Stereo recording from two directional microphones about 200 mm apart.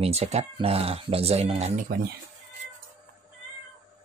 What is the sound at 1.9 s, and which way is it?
Speech, 50° right (ahead or behind).